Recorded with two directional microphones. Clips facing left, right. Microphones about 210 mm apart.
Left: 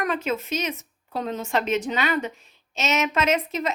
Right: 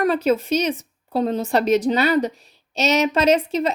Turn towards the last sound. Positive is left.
turn(degrees=-30)  # may be behind; listen again after turning